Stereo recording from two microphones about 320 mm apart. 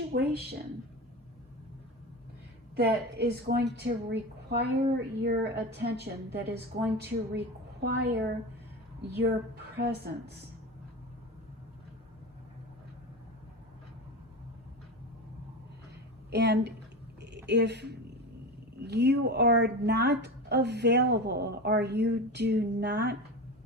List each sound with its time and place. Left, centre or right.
0.1 s a woman's voice: right
2.7 s speech: right
9.7 s speech: right
16.3 s speech: right
17.2 s a sound: right
18.9 s speech: right